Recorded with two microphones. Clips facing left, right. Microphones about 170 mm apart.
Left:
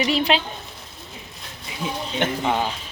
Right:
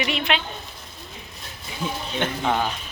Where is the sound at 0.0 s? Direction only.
35° left (ahead or behind).